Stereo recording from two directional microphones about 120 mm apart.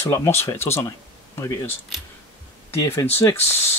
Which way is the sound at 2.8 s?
20° left (ahead or behind).